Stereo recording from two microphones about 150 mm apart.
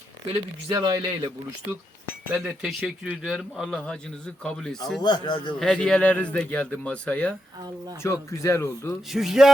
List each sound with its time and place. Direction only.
0.7 s speech: 20° right (ahead or behind)
2.4 s speech: 5° right (ahead or behind)
5.0 s speech: 30° left (ahead or behind)
5.5 s speech: 5° left (ahead or behind)
8.0 s speech: 20° left (ahead or behind)
9.0 s speech: centre (ahead or behind)